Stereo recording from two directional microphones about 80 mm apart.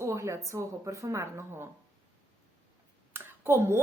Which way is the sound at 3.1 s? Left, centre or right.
Right.